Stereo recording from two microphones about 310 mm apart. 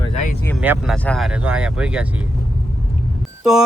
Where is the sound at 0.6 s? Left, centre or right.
Centre.